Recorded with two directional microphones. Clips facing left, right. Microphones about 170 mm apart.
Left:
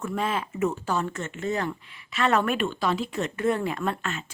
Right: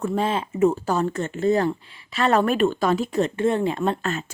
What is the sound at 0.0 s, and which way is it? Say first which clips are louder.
Speech: right 5 dB; 30° right (ahead or behind).